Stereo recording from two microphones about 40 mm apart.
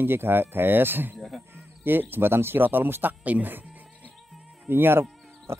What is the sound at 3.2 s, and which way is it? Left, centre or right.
Speech, right.